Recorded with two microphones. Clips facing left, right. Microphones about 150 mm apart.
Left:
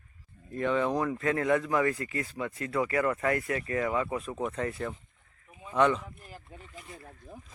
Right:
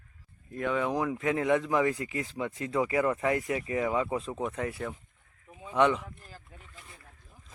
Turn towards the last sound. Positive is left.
turn(degrees=10)  # may be behind; listen again after turning